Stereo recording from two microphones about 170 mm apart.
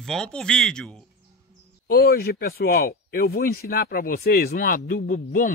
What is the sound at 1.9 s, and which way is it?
Speech, 65° left (ahead or behind).